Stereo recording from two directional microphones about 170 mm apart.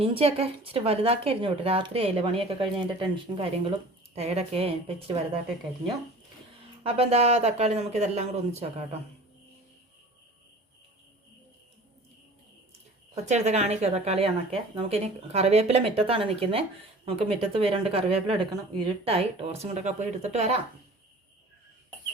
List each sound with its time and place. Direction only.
0.0 s a woman's voice: 35° right (ahead or behind)
6.8 s a woman's voice: 35° right (ahead or behind)
13.2 s a woman's voice: 40° right (ahead or behind)